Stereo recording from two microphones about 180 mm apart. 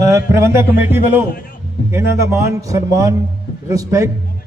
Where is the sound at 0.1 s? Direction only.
15° right (ahead or behind).